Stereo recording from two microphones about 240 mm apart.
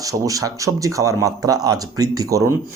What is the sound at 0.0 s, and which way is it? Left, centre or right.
Speech, centre.